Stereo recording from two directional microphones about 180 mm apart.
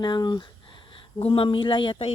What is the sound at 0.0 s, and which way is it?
Speech, 25° left (ahead or behind).